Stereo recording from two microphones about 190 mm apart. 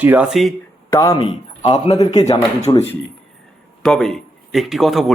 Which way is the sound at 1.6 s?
35° left (ahead or behind).